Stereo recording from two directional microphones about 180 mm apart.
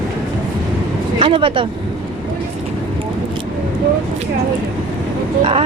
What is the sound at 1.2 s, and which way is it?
Speech, 30° right (ahead or behind).